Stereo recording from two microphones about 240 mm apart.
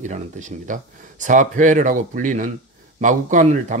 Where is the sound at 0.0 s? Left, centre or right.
Right.